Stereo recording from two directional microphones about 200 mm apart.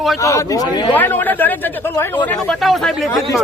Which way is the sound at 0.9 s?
10° left (ahead or behind).